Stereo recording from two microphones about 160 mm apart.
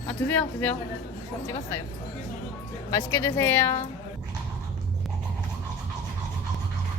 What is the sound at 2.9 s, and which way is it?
Speech, 15° left (ahead or behind).